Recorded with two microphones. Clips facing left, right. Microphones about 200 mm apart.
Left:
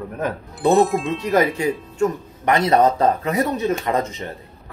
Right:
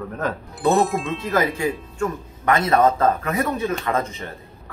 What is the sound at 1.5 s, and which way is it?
Speech, 20° left (ahead or behind).